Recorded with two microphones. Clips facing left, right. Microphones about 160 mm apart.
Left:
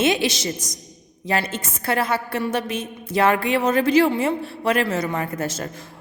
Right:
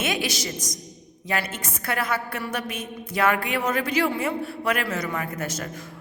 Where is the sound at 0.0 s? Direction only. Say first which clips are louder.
Left 7 dB; 25° left (ahead or behind).